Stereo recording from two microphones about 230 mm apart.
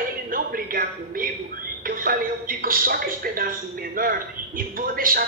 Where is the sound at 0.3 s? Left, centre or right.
Right.